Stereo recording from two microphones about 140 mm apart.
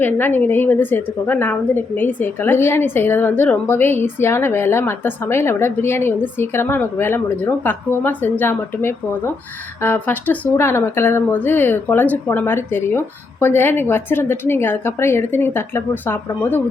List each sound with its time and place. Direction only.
0.0 s a woman's voice: 15° left (ahead or behind)